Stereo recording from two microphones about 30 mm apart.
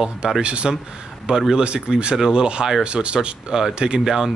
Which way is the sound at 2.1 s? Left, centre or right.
Centre.